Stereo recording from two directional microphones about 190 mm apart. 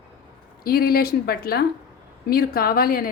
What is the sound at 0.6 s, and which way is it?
A woman's voice, 50° left (ahead or behind).